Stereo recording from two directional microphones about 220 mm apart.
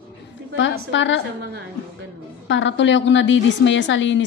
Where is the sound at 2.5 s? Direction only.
55° left (ahead or behind).